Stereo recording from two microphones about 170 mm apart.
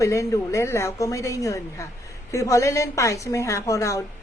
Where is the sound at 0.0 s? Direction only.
20° left (ahead or behind).